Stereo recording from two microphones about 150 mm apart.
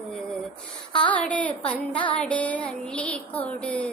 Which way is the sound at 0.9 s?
10° left (ahead or behind).